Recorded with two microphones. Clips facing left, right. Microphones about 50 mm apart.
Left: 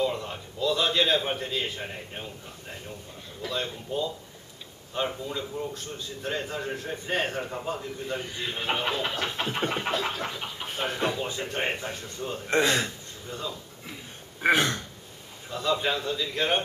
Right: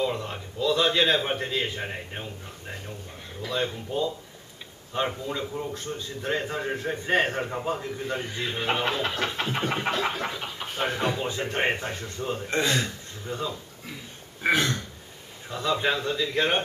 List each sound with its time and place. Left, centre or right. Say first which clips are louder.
0.0 s a man's voice: even; centre
3.4 s a man's voice: right 3 dB; centre
8.3 s speech: right 3 dB; centre
10.4 s a man's voice: right 2 dB; centre
11.2 s a man's voice: right 3 dB; right
12.4 s speech: left 3 dB; centre
13.3 s a man's voice: right 4 dB; centre
14.4 s throat clearing: left 1 dB; centre
15.5 s a man's voice: right 1 dB; centre